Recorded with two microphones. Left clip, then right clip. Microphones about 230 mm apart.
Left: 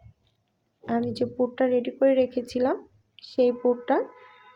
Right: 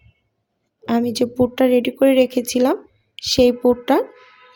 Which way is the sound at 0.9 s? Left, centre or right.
Right.